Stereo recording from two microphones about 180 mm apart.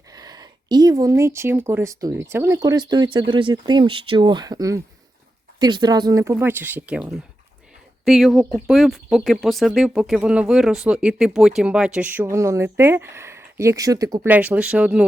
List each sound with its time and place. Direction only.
0.1 s speech: 20° right (ahead or behind)
14.3 s speech: 10° right (ahead or behind)